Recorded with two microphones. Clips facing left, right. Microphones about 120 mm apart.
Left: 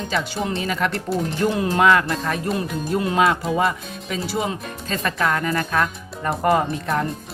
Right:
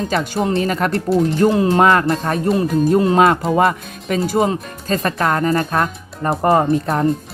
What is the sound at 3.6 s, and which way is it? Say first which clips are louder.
Speech: right 6 dB; 60° right (ahead or behind).